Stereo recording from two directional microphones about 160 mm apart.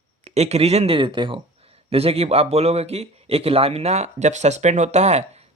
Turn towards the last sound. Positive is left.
turn(degrees=-45)  # may be behind; listen again after turning